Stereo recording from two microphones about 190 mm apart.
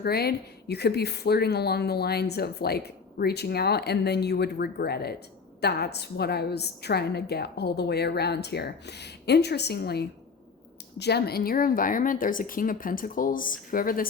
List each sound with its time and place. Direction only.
0.0 s a woman's voice: 55° left (ahead or behind)